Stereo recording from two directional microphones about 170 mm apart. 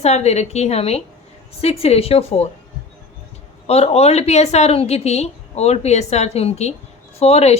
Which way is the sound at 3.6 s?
35° left (ahead or behind).